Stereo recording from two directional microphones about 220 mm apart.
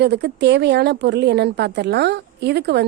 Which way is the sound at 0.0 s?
50° right (ahead or behind).